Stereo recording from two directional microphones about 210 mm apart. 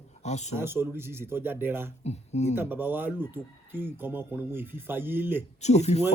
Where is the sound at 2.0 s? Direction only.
30° left (ahead or behind).